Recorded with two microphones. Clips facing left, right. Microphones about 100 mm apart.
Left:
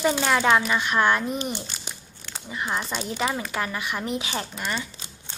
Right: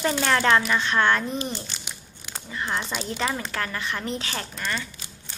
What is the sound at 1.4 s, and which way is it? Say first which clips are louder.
Speech: left 1 dB; 25° left (ahead or behind).